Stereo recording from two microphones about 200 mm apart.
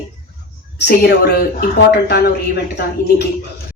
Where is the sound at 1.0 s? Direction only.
55° left (ahead or behind).